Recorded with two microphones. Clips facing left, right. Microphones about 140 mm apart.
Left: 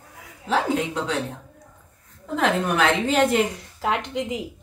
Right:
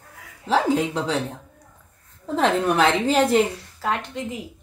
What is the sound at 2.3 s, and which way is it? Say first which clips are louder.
A woman's voice: right 2 dB; 35° right (ahead or behind).